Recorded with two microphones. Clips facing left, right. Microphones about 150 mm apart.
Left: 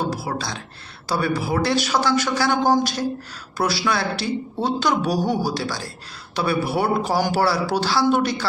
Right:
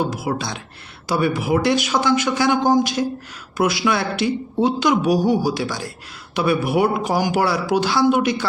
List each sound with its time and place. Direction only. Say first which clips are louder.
0.1 s speech: right 2 dB; 20° right (ahead or behind)